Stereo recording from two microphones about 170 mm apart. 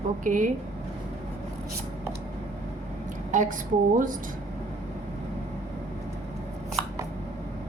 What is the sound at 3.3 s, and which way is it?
Speech, 50° right (ahead or behind).